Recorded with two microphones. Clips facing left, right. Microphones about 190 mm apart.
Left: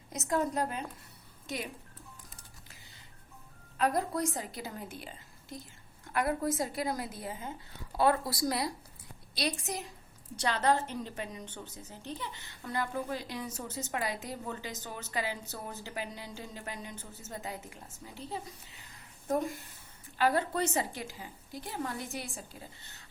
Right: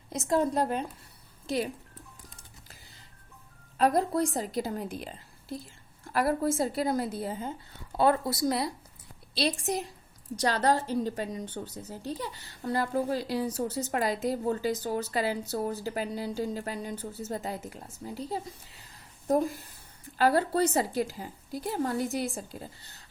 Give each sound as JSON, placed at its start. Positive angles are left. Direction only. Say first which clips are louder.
{"t": 0.1, "sound": "a woman's voice", "louder": "right 5 dB", "side_deg": -30}
{"t": 3.8, "sound": "a woman's voice", "louder": "right 5 dB", "side_deg": -35}